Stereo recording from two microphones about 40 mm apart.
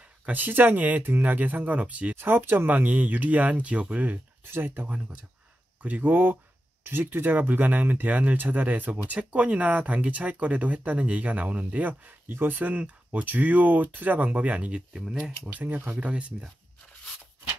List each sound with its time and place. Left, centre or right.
0.2 s speech: right
2.1 s speech: right
4.5 s speech: right
4.8 s speech: right
5.8 s speech: right
12.3 s speech: right
12.5 s speech: right
14.7 s speech: right
15.5 s speech: right
16.0 s speech: right